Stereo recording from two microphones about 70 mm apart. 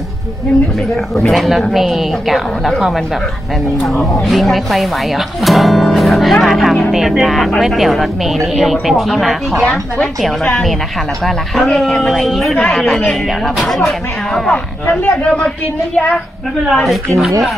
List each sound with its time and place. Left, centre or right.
1.3 s speech: centre
9.7 s speech: centre
16.6 s speech: centre